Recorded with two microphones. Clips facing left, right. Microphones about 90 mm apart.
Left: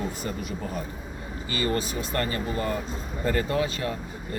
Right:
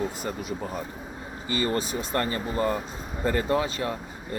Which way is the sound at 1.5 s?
25° right (ahead or behind).